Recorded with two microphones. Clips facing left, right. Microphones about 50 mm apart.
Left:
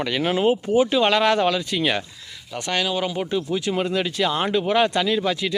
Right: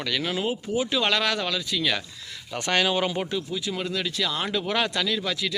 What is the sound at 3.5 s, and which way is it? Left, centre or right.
Speech, left.